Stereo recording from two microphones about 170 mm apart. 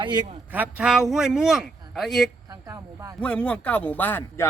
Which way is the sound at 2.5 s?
20° right (ahead or behind).